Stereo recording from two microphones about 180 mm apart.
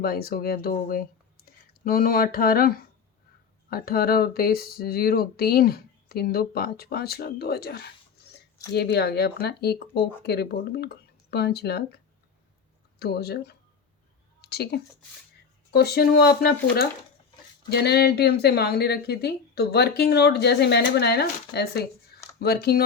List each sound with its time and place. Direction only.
0.0 s speech: 60° left (ahead or behind)
13.0 s speech: 60° left (ahead or behind)
17.7 s speech: 65° left (ahead or behind)